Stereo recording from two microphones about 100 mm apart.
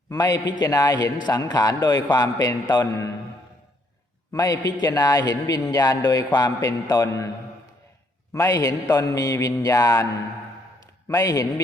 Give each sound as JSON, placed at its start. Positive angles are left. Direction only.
{"t": 0.1, "sound": "a man's voice", "side_deg": 40}
{"t": 4.3, "sound": "a man's voice", "side_deg": 35}
{"t": 8.3, "sound": "a man's voice", "side_deg": 35}
{"t": 11.1, "sound": "a man's voice", "side_deg": 35}